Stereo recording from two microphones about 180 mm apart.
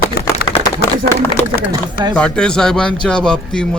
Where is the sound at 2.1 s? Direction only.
5° left (ahead or behind).